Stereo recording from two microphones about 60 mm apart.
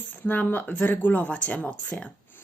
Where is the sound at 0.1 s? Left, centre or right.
Left.